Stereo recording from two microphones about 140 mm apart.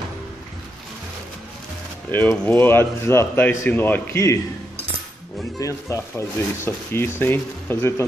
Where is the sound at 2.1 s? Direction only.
15° left (ahead or behind).